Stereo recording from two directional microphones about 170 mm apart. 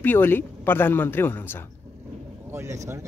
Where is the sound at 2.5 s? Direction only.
15° right (ahead or behind).